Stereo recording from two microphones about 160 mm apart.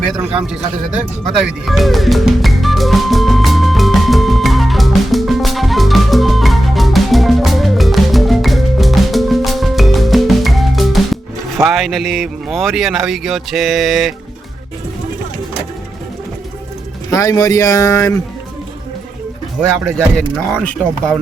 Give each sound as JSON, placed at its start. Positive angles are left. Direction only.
{"t": 1.6, "sound": "music", "side_deg": 0}
{"t": 11.7, "sound": "speech", "side_deg": 0}
{"t": 17.1, "sound": "speech", "side_deg": 20}
{"t": 20.1, "sound": "speech", "side_deg": 5}